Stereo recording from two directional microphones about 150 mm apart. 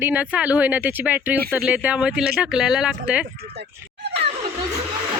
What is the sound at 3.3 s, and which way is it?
Speech, 90° right.